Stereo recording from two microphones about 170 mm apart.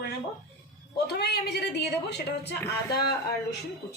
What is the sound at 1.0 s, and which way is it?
A woman's voice, 70° left (ahead or behind).